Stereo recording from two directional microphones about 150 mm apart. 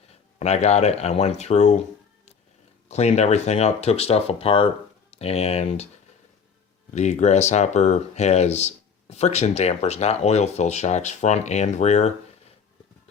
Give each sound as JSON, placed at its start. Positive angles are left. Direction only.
{"t": 0.3, "sound": "speech", "side_deg": 45}
{"t": 2.9, "sound": "speech", "side_deg": 45}
{"t": 6.9, "sound": "speech", "side_deg": 50}